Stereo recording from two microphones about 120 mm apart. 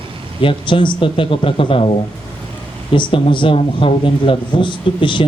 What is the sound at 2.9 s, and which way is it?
Speech, 45° left (ahead or behind).